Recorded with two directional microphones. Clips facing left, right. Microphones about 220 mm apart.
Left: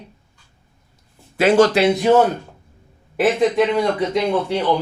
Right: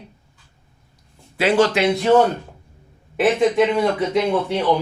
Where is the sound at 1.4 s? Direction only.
45° left (ahead or behind).